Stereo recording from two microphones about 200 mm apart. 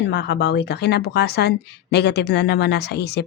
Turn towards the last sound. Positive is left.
turn(degrees=55)  # may be behind; listen again after turning